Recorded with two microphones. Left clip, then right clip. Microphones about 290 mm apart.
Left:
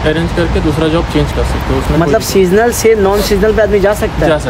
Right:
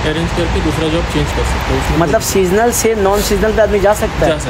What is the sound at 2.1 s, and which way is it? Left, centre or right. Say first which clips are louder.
Speech: left 5 dB; centre.